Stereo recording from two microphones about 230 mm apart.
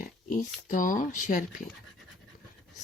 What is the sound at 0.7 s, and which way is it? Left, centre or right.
Speech, left.